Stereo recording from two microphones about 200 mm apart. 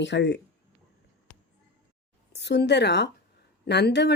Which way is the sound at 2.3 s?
60° left (ahead or behind).